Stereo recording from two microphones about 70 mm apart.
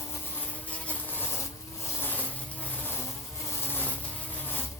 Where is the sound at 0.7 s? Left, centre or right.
Left.